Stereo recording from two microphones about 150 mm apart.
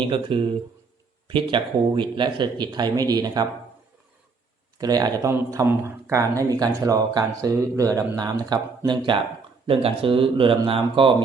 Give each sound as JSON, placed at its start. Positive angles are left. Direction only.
{"t": 0.1, "sound": "speech", "side_deg": -35}
{"t": 4.8, "sound": "speech", "side_deg": -25}